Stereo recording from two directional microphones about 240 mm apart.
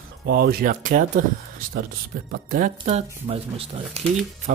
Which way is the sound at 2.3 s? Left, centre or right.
Right.